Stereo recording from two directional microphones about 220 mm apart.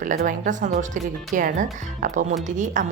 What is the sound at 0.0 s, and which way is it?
Speech, 35° right (ahead or behind).